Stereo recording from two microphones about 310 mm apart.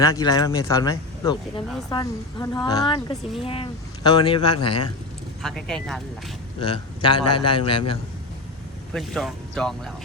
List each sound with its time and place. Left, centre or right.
0.0 s speech: centre
5.4 s speech: centre
6.6 s speech: centre
8.9 s speech: centre